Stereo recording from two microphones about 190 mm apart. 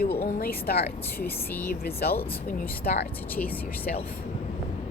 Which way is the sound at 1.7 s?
55° left (ahead or behind).